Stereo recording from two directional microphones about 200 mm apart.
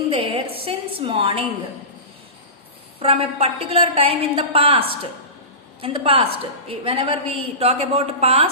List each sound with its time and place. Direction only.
0.1 s a woman's voice: 30° right (ahead or behind)
3.0 s a woman's voice: 30° right (ahead or behind)